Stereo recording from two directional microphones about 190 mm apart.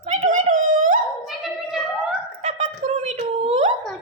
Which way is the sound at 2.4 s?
45° right (ahead or behind).